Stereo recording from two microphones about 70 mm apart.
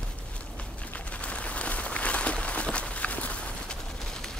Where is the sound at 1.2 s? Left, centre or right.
Centre.